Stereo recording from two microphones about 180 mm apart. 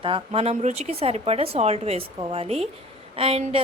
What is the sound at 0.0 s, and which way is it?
A woman's voice, 30° right (ahead or behind).